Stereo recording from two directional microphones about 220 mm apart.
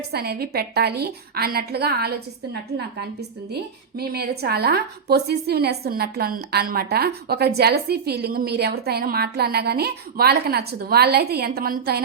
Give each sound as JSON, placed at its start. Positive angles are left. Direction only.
{"t": 0.1, "sound": "a woman's voice", "side_deg": -45}
{"t": 3.5, "sound": "a woman's voice", "side_deg": -45}